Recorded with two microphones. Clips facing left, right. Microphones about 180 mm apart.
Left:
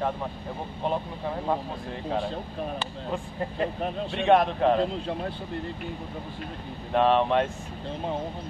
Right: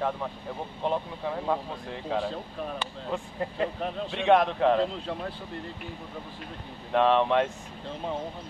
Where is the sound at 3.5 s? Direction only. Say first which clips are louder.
Left 2 dB; 40° left (ahead or behind).